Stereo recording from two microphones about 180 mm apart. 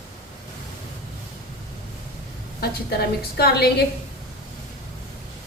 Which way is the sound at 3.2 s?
60° left (ahead or behind).